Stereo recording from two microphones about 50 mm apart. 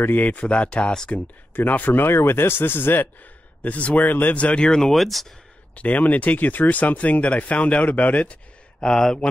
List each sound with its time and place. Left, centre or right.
0.0 s speech: left
1.5 s speech: left
2.0 s speech: left
3.6 s speech: left
4.6 s speech: centre
4.9 s speech: centre
5.8 s speech: left
8.8 s speech: centre